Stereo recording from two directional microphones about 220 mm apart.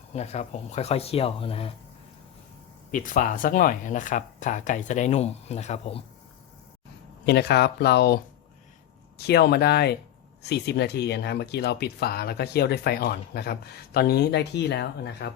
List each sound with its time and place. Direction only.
0.1 s speech: 30° left (ahead or behind)
2.9 s speech: 40° left (ahead or behind)
7.3 s speech: 50° left (ahead or behind)